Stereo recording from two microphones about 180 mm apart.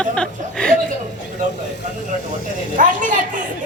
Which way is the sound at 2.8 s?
45° right (ahead or behind).